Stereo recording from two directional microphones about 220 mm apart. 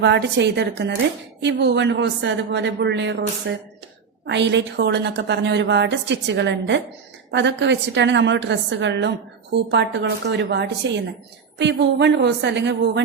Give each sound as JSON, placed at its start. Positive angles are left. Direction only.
{"t": 0.0, "sound": "a woman's voice", "side_deg": -50}